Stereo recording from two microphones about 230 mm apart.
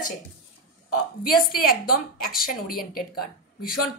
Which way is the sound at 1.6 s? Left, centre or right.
Left.